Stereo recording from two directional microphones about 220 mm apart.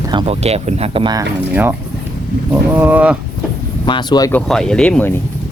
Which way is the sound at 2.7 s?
10° right (ahead or behind).